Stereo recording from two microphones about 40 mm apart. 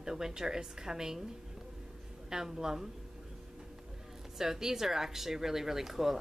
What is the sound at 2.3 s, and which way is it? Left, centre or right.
Speech, centre.